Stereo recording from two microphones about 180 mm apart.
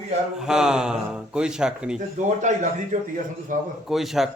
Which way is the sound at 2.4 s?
45° right (ahead or behind).